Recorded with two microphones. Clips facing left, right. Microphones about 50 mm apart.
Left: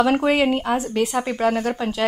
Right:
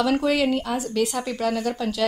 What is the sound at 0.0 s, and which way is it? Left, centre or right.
Speech, left.